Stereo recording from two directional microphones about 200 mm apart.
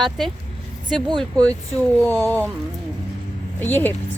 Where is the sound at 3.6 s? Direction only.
10° left (ahead or behind).